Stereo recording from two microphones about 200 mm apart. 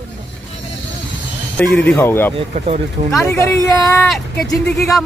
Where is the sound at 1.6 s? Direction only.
Centre (ahead or behind).